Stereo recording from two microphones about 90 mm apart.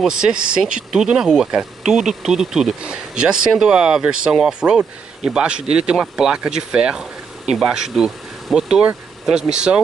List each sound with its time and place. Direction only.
0.0 s speech: 5° right (ahead or behind)